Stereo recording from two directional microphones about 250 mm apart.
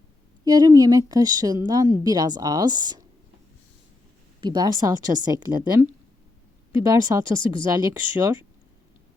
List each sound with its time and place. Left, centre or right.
0.4 s speech: centre
4.4 s speech: centre